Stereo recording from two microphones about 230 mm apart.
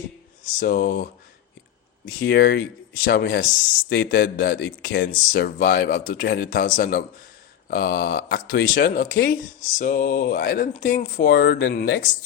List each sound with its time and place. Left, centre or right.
0.6 s speech: left
2.0 s speech: left
3.9 s a man's voice: left